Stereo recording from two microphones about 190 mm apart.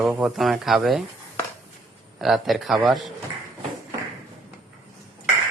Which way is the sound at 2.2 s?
Centre (ahead or behind).